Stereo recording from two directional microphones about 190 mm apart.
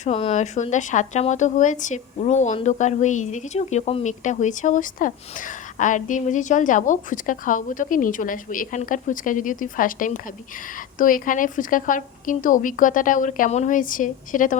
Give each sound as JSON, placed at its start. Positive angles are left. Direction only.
{"t": 0.0, "sound": "a woman's voice", "side_deg": 35}